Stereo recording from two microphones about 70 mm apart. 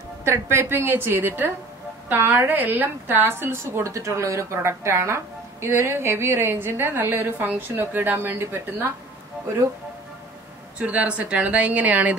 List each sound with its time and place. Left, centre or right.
0.2 s a woman's voice: right
10.8 s speech: centre